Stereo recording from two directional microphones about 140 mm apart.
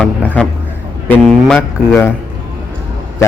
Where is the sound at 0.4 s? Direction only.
10° left (ahead or behind).